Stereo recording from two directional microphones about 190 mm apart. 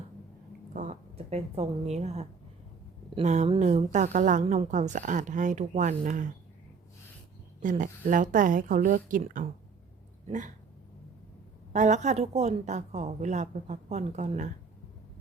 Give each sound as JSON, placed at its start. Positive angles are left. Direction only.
{"t": 0.7, "sound": "a woman's voice", "side_deg": -40}
{"t": 7.6, "sound": "a woman's voice", "side_deg": -45}
{"t": 11.7, "sound": "a woman's voice", "side_deg": -40}